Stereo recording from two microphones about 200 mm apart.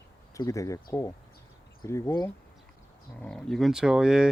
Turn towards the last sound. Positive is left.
turn(degrees=-5)  # may be behind; listen again after turning